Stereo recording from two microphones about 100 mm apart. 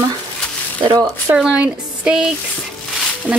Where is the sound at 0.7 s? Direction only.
55° right (ahead or behind).